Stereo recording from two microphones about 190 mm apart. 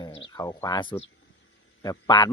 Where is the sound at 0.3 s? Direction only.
20° left (ahead or behind).